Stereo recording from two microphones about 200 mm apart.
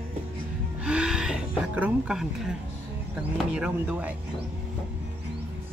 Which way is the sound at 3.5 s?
5° right (ahead or behind).